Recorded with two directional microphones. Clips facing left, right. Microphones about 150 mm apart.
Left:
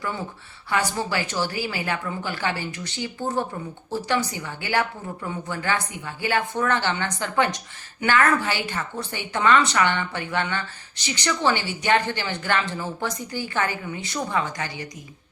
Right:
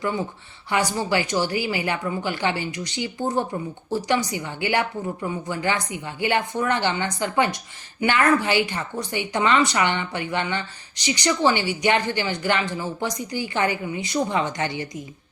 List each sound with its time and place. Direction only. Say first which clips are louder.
0.7 s a woman's voice: right 2 dB; 15° right (ahead or behind)